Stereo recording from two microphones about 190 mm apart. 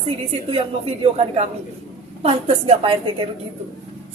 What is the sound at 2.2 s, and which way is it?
Speech, 30° right (ahead or behind).